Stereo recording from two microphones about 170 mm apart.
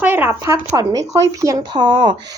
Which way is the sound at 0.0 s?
10° right (ahead or behind).